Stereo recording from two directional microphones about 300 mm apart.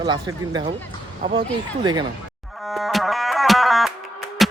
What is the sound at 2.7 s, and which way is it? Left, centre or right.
Music, centre.